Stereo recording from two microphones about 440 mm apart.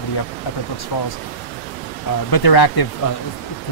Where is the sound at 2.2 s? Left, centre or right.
Left.